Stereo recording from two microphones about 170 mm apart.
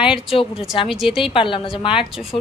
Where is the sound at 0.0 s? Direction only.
5° right (ahead or behind).